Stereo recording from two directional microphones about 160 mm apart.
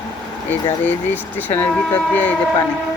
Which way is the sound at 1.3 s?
10° left (ahead or behind).